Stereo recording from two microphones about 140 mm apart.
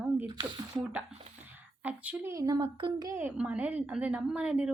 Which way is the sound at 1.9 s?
15° right (ahead or behind).